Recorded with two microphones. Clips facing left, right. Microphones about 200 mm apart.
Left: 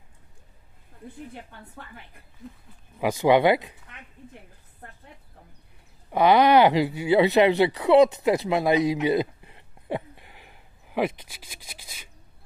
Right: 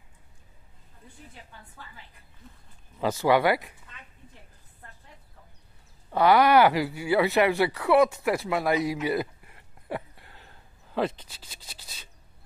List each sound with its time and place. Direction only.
1.0 s a woman's voice: 55° left (ahead or behind)
3.0 s speech: 15° left (ahead or behind)
6.0 s speech: 20° left (ahead or behind)
9.0 s a sound: 20° left (ahead or behind)